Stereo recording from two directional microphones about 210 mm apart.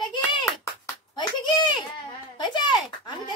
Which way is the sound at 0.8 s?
20° left (ahead or behind).